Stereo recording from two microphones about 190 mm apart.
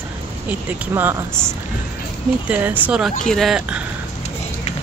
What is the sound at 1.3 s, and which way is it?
Speech, 5° left (ahead or behind).